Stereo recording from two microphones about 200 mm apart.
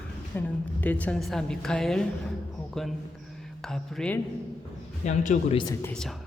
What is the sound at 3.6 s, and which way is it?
Speech, centre (ahead or behind).